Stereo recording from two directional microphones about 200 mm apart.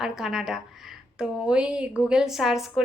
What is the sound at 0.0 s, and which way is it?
A woman's voice, centre (ahead or behind).